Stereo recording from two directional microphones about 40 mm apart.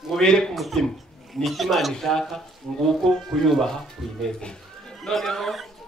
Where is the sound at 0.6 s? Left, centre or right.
Centre.